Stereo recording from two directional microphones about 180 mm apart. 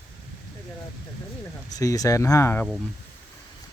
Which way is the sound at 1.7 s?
20° left (ahead or behind).